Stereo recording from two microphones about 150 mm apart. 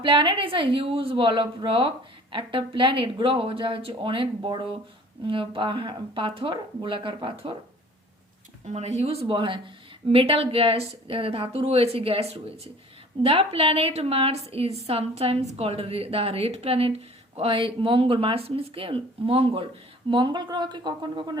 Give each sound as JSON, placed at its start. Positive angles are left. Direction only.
{"t": 0.0, "sound": "a woman's voice", "side_deg": -35}
{"t": 8.6, "sound": "a woman's voice", "side_deg": -50}